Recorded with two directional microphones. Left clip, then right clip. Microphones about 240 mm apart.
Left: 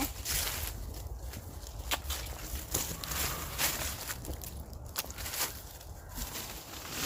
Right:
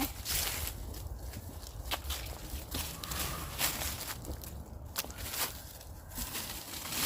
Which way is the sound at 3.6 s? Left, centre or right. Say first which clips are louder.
Left 1 dB; centre.